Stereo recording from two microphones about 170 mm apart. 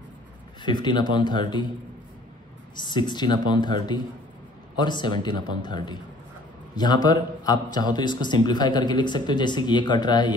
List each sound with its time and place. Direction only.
0.6 s a man's voice: 25° left (ahead or behind)
2.7 s a man's voice: 25° left (ahead or behind)